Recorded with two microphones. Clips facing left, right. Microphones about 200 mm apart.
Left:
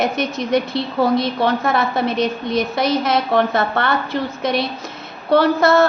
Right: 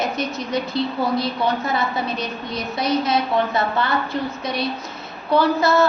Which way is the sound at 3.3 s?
55° left (ahead or behind).